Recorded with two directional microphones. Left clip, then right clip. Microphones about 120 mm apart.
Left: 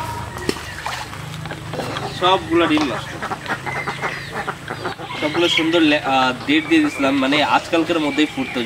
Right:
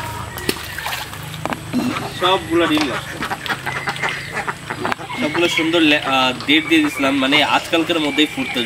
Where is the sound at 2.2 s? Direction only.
25° left (ahead or behind).